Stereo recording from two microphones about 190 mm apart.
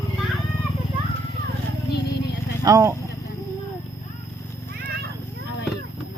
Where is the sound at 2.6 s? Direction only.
15° right (ahead or behind).